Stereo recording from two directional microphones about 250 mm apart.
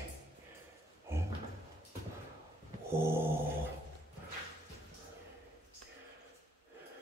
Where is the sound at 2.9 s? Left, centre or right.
Centre.